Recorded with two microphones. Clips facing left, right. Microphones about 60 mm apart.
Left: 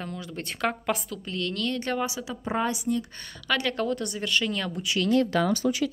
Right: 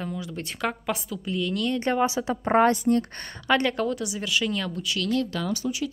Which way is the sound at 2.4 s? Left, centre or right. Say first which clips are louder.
Right 8 dB; right.